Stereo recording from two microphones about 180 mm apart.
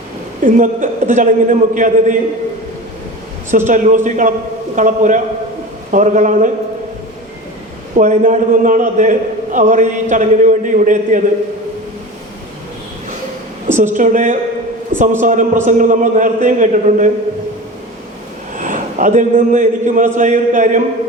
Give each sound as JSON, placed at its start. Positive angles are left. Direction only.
{"t": 0.4, "sound": "a man's voice", "side_deg": -45}
{"t": 3.5, "sound": "a man's voice", "side_deg": -45}
{"t": 7.9, "sound": "a man's voice", "side_deg": -45}
{"t": 13.7, "sound": "a man's voice", "side_deg": -45}
{"t": 18.5, "sound": "a man's voice", "side_deg": -45}